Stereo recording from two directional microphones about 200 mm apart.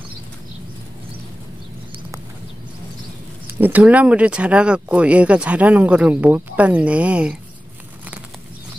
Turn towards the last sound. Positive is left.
turn(degrees=-5)  # may be behind; listen again after turning